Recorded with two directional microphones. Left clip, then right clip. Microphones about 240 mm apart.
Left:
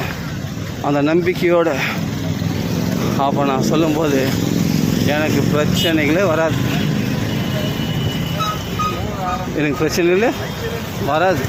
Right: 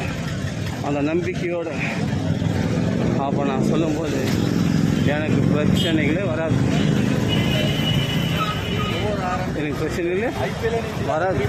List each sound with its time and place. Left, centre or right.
0.9 s speech: centre
3.2 s speech: centre
5.0 s speech: centre
9.6 s speech: centre